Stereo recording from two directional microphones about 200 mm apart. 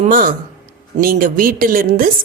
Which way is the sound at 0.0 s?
40° right (ahead or behind).